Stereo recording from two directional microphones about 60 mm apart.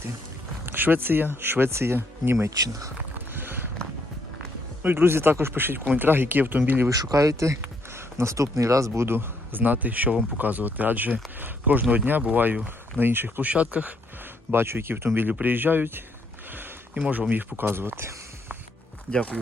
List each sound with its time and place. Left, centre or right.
0.6 s speech: right
2.6 s speech: right
3.2 s a sound: right
4.8 s speech: right
6.9 s speech: right
9.0 s speech: right
13.4 s speech: right
14.5 s speech: right
19.1 s speech: centre